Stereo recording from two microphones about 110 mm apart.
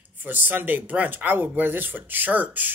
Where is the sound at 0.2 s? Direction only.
15° right (ahead or behind).